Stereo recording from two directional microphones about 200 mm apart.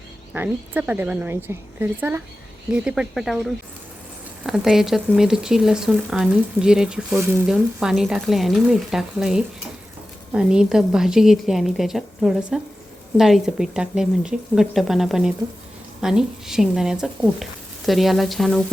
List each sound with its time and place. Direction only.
0.3 s a woman's voice: 10° right (ahead or behind)